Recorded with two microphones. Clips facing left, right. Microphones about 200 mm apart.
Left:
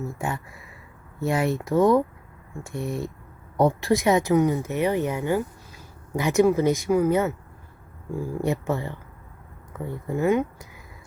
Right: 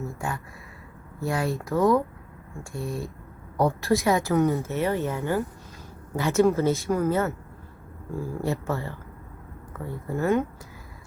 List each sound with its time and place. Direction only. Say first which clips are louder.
1.2 s speech: left 3 dB; 25° left (ahead or behind)
1.8 s speech: left 2 dB; centre (ahead or behind)
2.6 s speech: left 3 dB; 20° left (ahead or behind)